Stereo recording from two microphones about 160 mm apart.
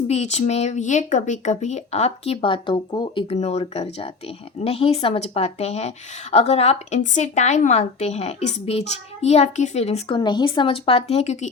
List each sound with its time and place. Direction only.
0.1 s a woman's voice: 45° left (ahead or behind); by 3.3 s 30° left (ahead or behind)
3.3 s a woman's voice: 40° left (ahead or behind)
10.2 s a woman's voice: 30° left (ahead or behind); by 11.4 s 45° left (ahead or behind)